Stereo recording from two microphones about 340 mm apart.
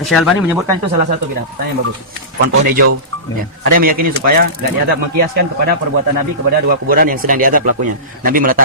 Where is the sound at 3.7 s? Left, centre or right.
Right.